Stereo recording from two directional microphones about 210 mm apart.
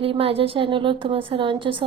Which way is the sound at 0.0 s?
25° right (ahead or behind).